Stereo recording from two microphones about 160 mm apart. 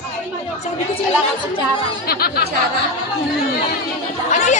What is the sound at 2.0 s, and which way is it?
Speech, 75° left (ahead or behind).